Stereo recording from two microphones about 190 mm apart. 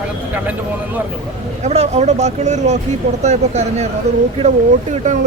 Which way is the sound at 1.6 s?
35° right (ahead or behind).